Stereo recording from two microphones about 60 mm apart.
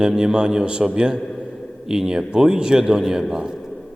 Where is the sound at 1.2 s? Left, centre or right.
Centre.